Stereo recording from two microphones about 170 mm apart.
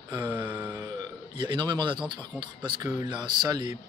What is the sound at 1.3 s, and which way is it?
Speech, 25° right (ahead or behind).